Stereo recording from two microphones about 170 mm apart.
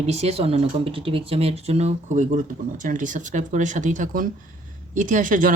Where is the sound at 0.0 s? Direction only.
40° right (ahead or behind).